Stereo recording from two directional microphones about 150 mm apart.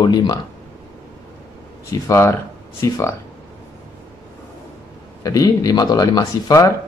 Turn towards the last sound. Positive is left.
turn(degrees=25)  # may be behind; listen again after turning